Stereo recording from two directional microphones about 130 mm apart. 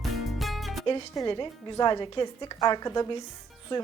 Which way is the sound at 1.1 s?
35° left (ahead or behind).